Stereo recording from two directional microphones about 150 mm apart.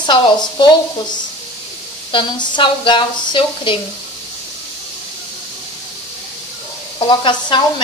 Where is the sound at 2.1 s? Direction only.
35° left (ahead or behind).